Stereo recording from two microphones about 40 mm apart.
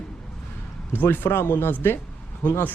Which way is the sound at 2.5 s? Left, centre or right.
Left.